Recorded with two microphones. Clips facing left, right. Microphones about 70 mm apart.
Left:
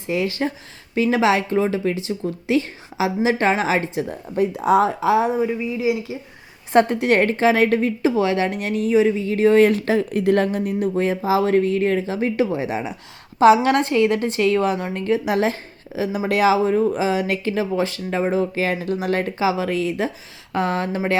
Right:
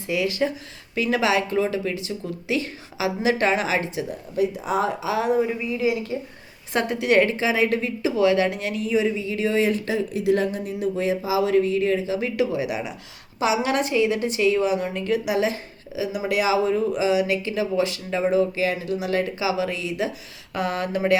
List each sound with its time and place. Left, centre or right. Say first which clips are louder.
0.1 s speech: left 1 dB; left
4.5 s speech: left 7 dB; left
5.1 s speech: even; left
5.5 s speech: left 2 dB; centre
6.7 s speech: left 4 dB; left
7.7 s speech: left 5 dB; left
13.4 s speech: left 8 dB; left